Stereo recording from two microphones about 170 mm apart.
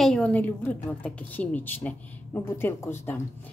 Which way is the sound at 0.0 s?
5° left (ahead or behind).